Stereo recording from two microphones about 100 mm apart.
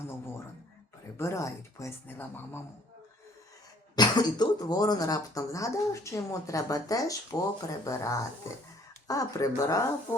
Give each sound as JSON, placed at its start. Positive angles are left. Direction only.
{"t": 0.1, "sound": "a sound", "side_deg": 25}
{"t": 1.1, "sound": "speech", "side_deg": 30}
{"t": 3.9, "sound": "speech", "side_deg": 45}